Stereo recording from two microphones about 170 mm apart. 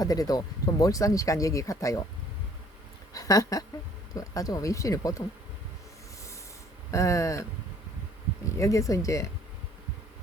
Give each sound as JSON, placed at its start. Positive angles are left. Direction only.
{"t": 0.0, "sound": "speech", "side_deg": 20}
{"t": 3.1, "sound": "speech", "side_deg": 20}
{"t": 6.9, "sound": "speech", "side_deg": 15}
{"t": 8.5, "sound": "speech", "side_deg": 20}